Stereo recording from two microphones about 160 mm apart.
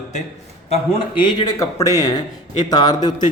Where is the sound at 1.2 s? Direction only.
25° left (ahead or behind).